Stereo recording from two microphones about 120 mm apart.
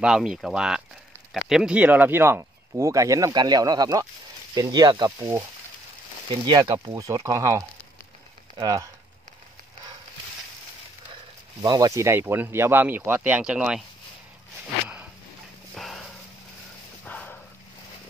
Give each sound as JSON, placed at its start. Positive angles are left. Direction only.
{"t": 0.0, "sound": "speech", "side_deg": -5}
{"t": 11.6, "sound": "speech", "side_deg": -30}
{"t": 15.7, "sound": "dog", "side_deg": 0}
{"t": 17.0, "sound": "a sound", "side_deg": 10}